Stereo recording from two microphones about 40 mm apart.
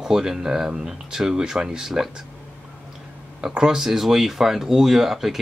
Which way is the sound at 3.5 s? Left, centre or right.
Centre.